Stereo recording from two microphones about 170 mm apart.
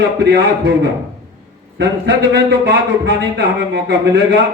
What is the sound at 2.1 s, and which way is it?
Speech, 90° right.